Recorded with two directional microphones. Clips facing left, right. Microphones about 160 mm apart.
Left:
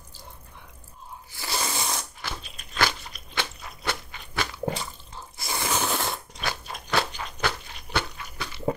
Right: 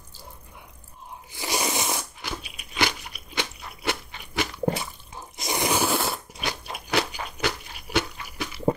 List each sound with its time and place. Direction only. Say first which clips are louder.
1.3 s crunch: right 4 dB; 15° right (ahead or behind)